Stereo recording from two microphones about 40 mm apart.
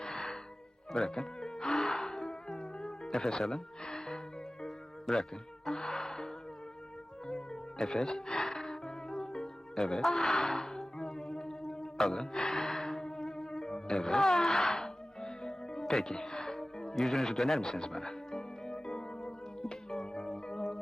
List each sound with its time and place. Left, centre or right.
0.0 s music: centre
3.2 s speech: centre
5.1 s speech: centre
5.6 s music: centre
7.9 s music: centre
9.9 s speech: centre
10.8 s music: centre
14.0 s music: centre